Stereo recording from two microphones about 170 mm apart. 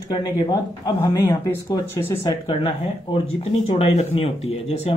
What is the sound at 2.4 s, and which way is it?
Speech, 35° left (ahead or behind).